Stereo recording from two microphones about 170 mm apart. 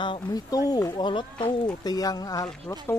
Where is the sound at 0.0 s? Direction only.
25° left (ahead or behind).